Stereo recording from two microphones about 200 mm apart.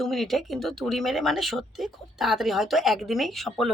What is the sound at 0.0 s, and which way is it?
Speech, centre (ahead or behind).